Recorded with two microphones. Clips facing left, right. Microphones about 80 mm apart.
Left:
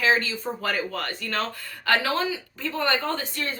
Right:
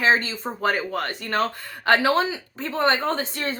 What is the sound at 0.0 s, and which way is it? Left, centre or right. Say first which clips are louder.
A woman's voice: right 2 dB; right.